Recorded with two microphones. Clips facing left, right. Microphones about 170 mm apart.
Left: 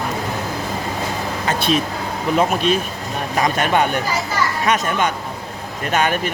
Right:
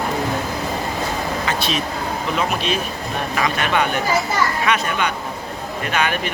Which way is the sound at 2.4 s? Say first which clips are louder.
Left 6 dB; 50° left (ahead or behind).